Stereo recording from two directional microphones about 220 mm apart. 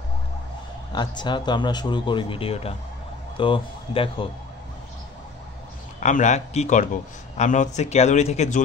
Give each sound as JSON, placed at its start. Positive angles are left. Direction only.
{"t": 0.9, "sound": "speech", "side_deg": 20}
{"t": 5.9, "sound": "a man's voice", "side_deg": 35}